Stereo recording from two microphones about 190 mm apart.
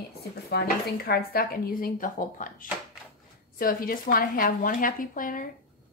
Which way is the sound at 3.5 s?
50° left (ahead or behind).